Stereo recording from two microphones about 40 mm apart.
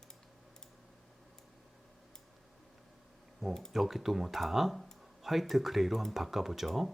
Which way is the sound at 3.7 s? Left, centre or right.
Centre.